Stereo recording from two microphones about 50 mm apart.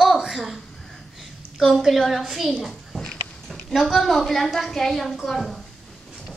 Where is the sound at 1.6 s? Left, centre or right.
Centre.